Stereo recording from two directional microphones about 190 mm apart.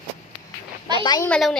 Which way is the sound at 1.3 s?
5° left (ahead or behind).